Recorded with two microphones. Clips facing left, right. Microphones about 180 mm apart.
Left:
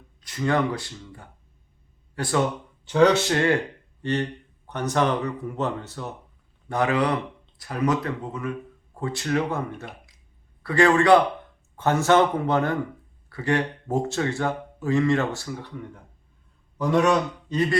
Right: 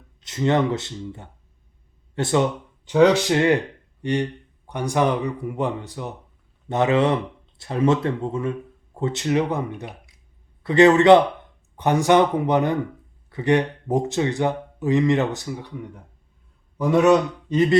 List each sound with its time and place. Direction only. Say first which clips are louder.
0.2 s a man's voice: right 3 dB; 25° right (ahead or behind)